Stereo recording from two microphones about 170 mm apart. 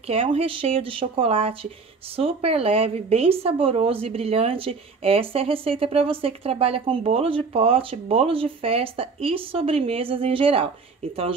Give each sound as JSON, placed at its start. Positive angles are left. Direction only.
{"t": 0.0, "sound": "speech", "side_deg": -35}